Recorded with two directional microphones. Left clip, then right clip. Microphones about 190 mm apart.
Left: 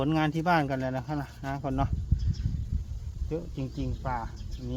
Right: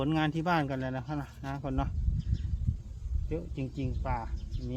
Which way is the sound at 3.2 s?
5° left (ahead or behind).